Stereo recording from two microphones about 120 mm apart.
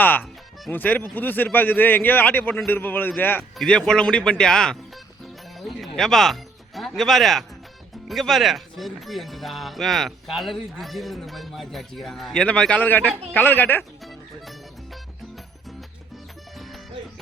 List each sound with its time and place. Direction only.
0.0 s speech: 15° left (ahead or behind)
14.0 s music: centre (ahead or behind)
16.6 s music: centre (ahead or behind)